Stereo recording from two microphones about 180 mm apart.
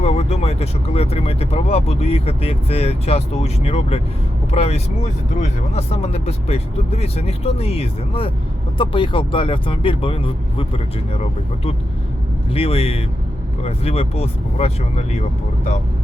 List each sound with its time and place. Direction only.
0.0 s speech: 35° left (ahead or behind)